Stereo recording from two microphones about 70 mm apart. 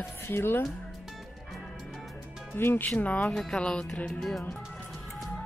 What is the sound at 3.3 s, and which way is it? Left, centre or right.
Speech, centre.